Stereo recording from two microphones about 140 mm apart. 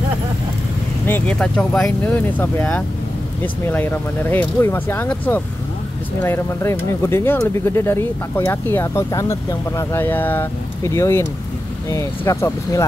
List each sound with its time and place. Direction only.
1.0 s speech: 10° left (ahead or behind)